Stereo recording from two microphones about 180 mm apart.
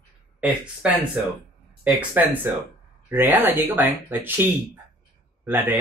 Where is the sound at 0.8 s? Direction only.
5° right (ahead or behind).